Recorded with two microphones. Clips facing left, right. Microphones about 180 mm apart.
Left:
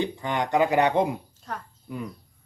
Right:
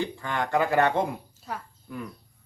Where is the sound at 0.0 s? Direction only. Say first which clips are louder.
Left 2 dB; 20° left (ahead or behind).